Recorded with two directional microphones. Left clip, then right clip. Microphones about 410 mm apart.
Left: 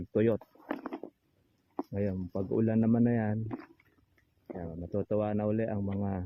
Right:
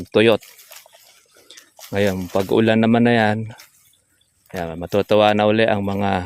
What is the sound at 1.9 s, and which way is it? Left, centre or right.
Speech, right.